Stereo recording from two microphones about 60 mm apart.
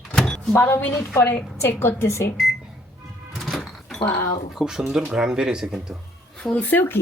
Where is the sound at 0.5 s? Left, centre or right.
Left.